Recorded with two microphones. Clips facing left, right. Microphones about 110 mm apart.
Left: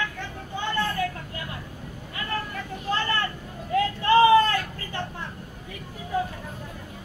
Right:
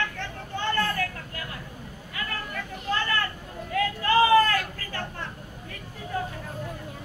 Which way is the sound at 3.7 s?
30° left (ahead or behind).